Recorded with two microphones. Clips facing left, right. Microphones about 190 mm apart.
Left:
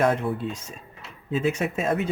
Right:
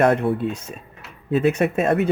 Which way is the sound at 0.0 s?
65° right (ahead or behind).